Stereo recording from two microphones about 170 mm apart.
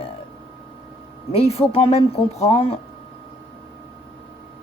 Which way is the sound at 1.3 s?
35° left (ahead or behind).